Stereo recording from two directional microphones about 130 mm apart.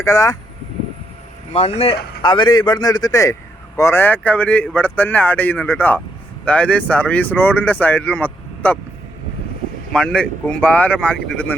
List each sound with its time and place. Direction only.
0.0 s speech: 25° left (ahead or behind)
1.5 s speech: 50° left (ahead or behind)
2.2 s a man's voice: 35° left (ahead or behind); by 8.8 s 10° left (ahead or behind)
9.9 s speech: 5° left (ahead or behind)